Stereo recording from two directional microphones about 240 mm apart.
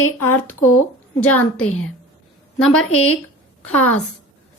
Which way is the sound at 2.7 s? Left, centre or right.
Left.